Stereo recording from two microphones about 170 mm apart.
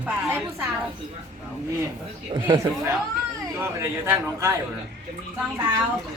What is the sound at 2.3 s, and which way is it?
Speech, 25° right (ahead or behind).